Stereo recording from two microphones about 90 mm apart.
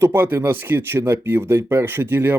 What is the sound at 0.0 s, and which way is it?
Speech, 25° right (ahead or behind).